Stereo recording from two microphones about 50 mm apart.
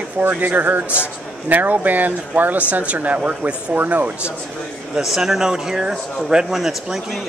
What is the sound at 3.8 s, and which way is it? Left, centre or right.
Speech, right.